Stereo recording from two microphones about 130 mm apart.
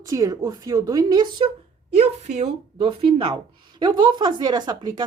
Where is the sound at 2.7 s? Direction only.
40° right (ahead or behind).